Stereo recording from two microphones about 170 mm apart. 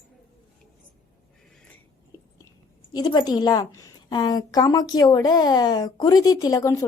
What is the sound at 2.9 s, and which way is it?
A woman's voice, 25° left (ahead or behind).